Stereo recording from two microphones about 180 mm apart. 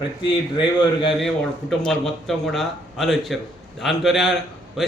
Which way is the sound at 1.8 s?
Centre (ahead or behind).